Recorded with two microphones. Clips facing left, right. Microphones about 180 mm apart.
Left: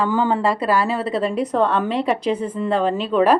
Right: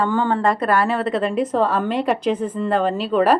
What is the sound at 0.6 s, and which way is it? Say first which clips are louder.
Speech: even; 55° right (ahead or behind).